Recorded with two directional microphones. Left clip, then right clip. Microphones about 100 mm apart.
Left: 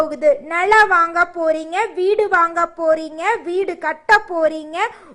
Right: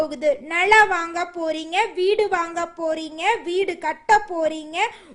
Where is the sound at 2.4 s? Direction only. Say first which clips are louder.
Left 8 dB; 5° right (ahead or behind).